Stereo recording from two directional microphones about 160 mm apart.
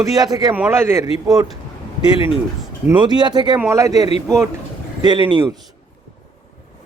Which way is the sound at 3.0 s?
25° right (ahead or behind).